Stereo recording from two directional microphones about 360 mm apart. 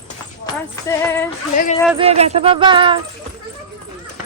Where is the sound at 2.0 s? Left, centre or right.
Centre.